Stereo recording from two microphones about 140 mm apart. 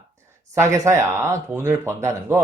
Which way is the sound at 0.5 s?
20° right (ahead or behind).